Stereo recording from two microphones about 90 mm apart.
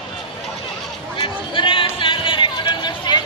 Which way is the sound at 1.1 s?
70° left (ahead or behind).